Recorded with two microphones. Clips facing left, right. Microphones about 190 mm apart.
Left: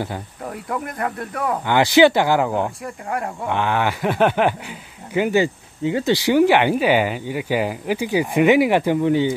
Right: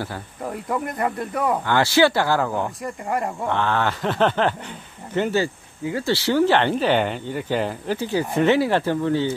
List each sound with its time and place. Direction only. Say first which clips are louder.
0.5 s speech: right 1 dB; centre (ahead or behind)
1.7 s speech: left 5 dB; 15° left (ahead or behind)
2.8 s speech: right 1 dB; centre (ahead or behind)
3.4 s speech: left 3 dB; 15° left (ahead or behind)